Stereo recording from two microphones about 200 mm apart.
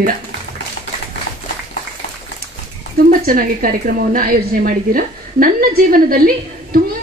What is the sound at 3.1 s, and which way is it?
A woman's voice, 45° right (ahead or behind).